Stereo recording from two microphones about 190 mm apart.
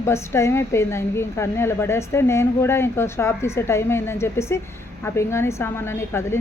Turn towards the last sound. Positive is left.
turn(degrees=15)  # may be behind; listen again after turning